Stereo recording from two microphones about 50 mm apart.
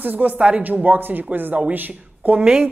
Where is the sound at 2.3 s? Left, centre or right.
Centre.